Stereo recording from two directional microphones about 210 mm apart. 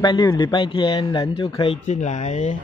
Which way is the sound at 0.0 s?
20° left (ahead or behind).